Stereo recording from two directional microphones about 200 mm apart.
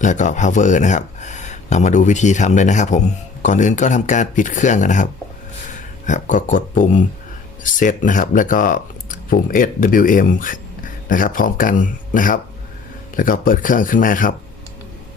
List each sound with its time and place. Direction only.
0.0 s speech: 40° left (ahead or behind)
6.1 s speech: 40° left (ahead or behind)